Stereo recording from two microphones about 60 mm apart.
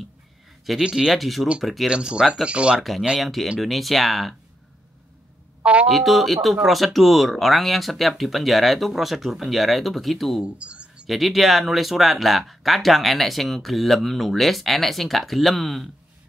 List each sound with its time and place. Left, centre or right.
0.8 s speech: centre
1.9 s speech: centre
2.8 s speech: centre
5.6 s speech: centre
5.9 s speech: centre
10.4 s a sound: centre
11.1 s speech: centre